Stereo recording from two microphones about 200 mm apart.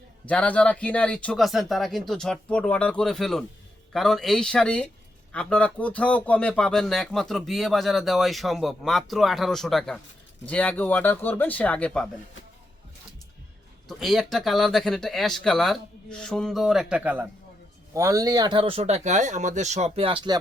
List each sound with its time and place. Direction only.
0.3 s speech: 5° left (ahead or behind)
13.8 s speech: centre (ahead or behind); by 20.3 s 25° right (ahead or behind)